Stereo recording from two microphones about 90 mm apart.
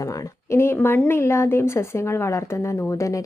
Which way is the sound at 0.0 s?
35° left (ahead or behind).